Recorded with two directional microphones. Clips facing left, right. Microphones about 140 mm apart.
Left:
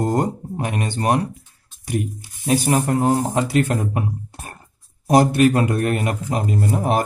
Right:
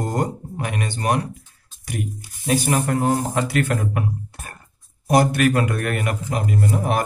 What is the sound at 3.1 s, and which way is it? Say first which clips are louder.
Speech: left 2 dB; 15° left (ahead or behind).